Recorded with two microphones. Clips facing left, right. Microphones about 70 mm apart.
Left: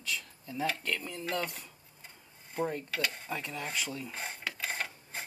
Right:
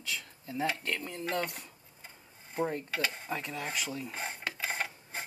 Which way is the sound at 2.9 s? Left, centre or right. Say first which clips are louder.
Right 1 dB; centre.